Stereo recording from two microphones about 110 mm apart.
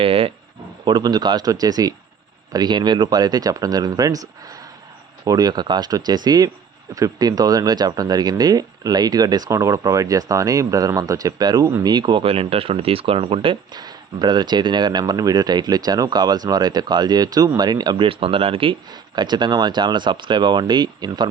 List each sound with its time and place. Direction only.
0.0 s speech: 60° right (ahead or behind)
0.9 s speech: 40° right (ahead or behind)
13.7 s speech: 40° right (ahead or behind)